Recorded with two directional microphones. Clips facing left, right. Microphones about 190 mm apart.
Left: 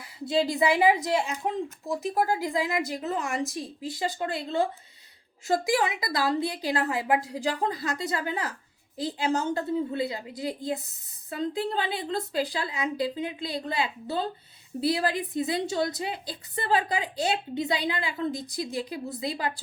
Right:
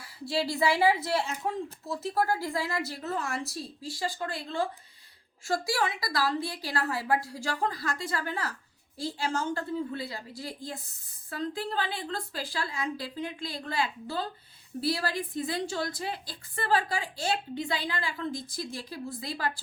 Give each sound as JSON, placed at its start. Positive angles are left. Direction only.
{"t": 0.3, "sound": "a woman's voice", "side_deg": 20}